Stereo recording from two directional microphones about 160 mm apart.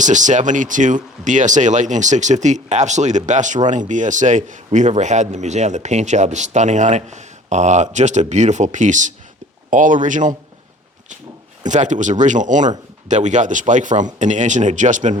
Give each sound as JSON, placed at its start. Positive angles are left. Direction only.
{"t": 0.0, "sound": "speech", "side_deg": -50}
{"t": 11.6, "sound": "speech", "side_deg": -50}